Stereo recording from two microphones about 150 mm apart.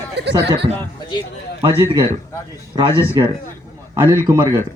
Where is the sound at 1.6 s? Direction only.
40° right (ahead or behind).